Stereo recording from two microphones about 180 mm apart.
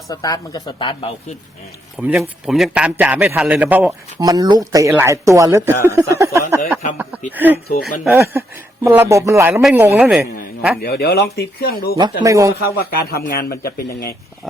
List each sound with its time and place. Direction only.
0.1 s speech: 20° left (ahead or behind)
2.0 s a man's voice: 5° right (ahead or behind)
4.2 s a man's voice: 20° right (ahead or behind)
7.7 s speech: 55° left (ahead or behind)
8.0 s a man's voice: 10° right (ahead or behind)
9.9 s a woman's voice: 5° right (ahead or behind)
10.8 s speech: 60° left (ahead or behind)
12.2 s a man's voice: 15° right (ahead or behind)
12.6 s speech: 60° left (ahead or behind)